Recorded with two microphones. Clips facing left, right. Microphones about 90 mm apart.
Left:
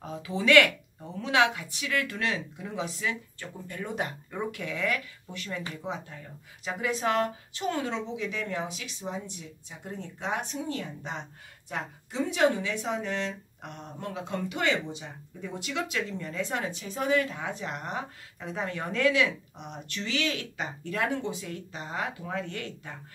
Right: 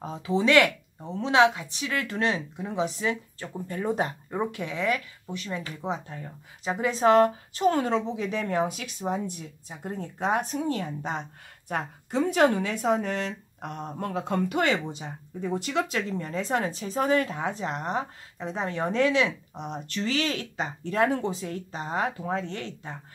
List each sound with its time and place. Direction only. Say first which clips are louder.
0.0 s speech: right 5 dB; 30° right (ahead or behind)
5.8 s speech: right 4 dB; 35° right (ahead or behind)